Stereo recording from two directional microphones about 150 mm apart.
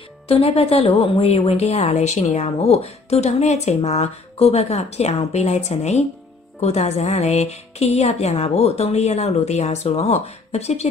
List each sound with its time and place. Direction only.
0.3 s a woman's voice: 40° left (ahead or behind)